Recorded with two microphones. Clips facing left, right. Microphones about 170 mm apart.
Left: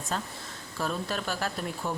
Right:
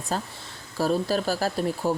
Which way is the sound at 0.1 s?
35° right (ahead or behind).